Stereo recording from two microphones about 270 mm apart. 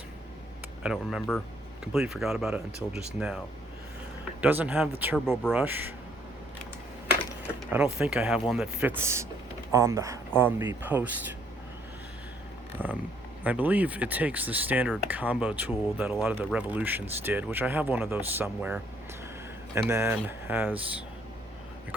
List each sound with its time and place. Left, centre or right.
0.8 s speech: centre
2.7 s speech: right
3.2 s speech: centre
7.9 s speech: centre
12.8 s speech: centre
13.4 s speech: centre
19.9 s speech: centre